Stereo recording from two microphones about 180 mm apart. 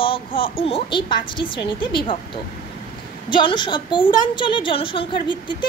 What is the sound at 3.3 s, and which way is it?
A child's voice, 25° left (ahead or behind).